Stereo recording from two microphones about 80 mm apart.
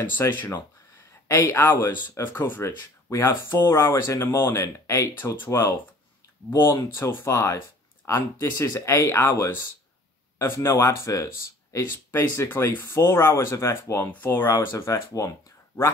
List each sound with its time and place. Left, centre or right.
0.2 s speech: left
7.0 s speech: left
12.1 s speech: left
14.1 s speech: left